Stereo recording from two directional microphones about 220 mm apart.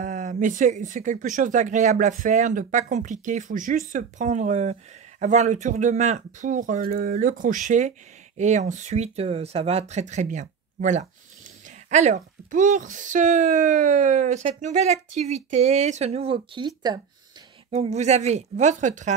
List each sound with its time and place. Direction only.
0.0 s speech: 35° right (ahead or behind)
17.6 s speech: 30° right (ahead or behind)